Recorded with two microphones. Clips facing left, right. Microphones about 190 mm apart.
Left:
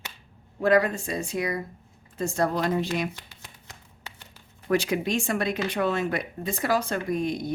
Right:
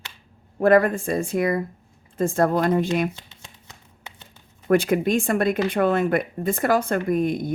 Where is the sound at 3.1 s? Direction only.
25° right (ahead or behind).